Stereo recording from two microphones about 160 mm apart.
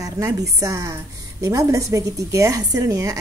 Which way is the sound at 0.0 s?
20° right (ahead or behind).